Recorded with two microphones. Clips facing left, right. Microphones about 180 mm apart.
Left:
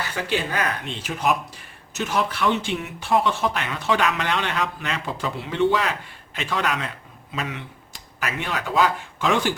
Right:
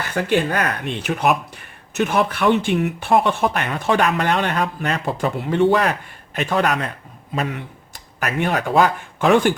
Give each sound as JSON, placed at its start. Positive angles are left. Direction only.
{"t": 0.0, "sound": "speech", "side_deg": -50}